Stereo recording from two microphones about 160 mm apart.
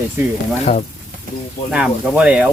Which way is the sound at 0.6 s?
45° left (ahead or behind).